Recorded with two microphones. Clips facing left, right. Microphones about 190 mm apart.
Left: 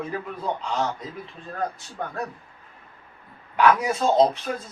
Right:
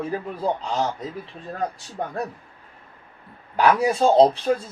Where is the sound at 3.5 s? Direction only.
35° right (ahead or behind).